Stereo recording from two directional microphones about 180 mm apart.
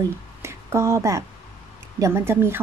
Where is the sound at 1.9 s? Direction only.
15° right (ahead or behind).